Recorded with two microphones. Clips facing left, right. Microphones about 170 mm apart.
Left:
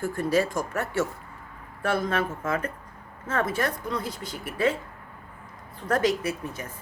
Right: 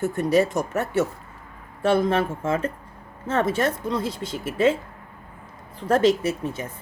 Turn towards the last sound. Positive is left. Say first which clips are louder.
# right 5 dB
turn(degrees=-25)  # may be behind; listen again after turning